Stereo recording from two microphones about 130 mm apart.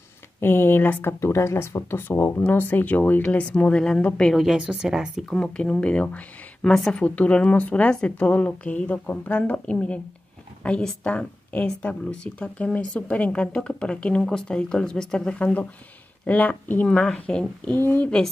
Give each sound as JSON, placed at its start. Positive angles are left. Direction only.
{"t": 0.4, "sound": "speech", "side_deg": 15}
{"t": 5.4, "sound": "speech", "side_deg": 5}